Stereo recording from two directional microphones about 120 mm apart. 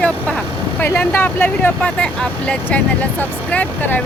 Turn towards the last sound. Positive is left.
turn(degrees=15)  # may be behind; listen again after turning